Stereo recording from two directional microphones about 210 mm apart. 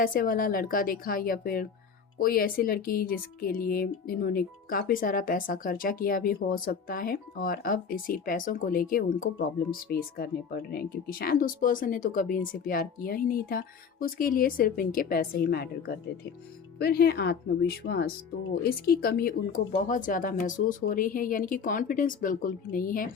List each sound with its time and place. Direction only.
0.0 s speech: 40° left (ahead or behind)